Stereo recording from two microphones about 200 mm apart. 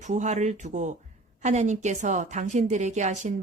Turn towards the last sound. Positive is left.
turn(degrees=-35)  # may be behind; listen again after turning